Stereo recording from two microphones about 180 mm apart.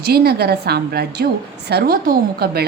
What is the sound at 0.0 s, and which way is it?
A woman's voice, 60° right (ahead or behind).